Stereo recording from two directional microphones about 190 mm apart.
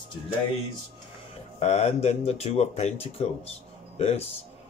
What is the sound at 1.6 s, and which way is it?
Speech, 35° left (ahead or behind).